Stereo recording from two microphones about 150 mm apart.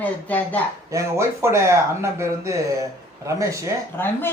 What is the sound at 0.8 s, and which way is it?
Speech, 20° right (ahead or behind).